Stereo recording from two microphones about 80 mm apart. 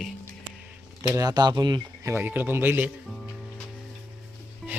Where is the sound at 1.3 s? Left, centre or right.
Right.